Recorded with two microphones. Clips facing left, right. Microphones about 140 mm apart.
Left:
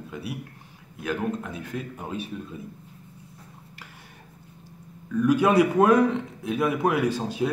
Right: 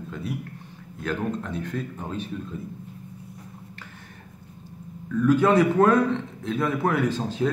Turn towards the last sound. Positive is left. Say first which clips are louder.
# even
turn(degrees=10)  # may be behind; listen again after turning